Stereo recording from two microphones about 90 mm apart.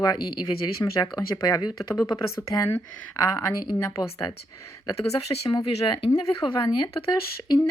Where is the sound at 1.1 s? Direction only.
45° left (ahead or behind).